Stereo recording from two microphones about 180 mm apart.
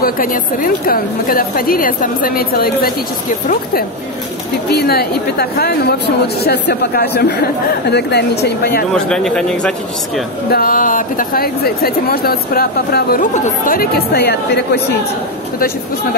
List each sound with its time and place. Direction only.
0.0 s a woman's voice: 50° left (ahead or behind)
4.6 s speech: 60° left (ahead or behind)
8.9 s a man's voice: 5° left (ahead or behind)
10.5 s speech: 50° left (ahead or behind)